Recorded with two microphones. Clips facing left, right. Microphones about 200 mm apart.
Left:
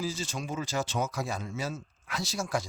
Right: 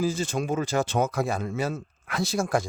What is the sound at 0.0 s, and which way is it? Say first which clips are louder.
Speech: right 8 dB; 55° right (ahead or behind).